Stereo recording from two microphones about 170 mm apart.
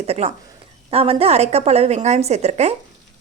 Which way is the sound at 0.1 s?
40° right (ahead or behind).